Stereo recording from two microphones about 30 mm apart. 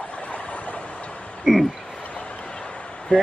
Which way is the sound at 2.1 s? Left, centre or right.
Left.